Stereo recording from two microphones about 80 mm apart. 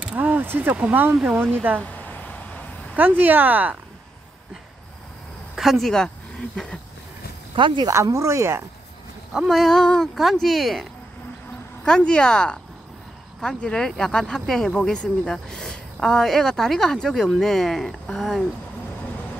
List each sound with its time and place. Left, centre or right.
0.1 s a sound: right
0.7 s speech: centre
1.8 s a sound: left
3.0 s speech: right
5.6 s speech: centre
7.5 s speech: right
7.9 s speech: right
9.3 s speech: centre
11.8 s speech: centre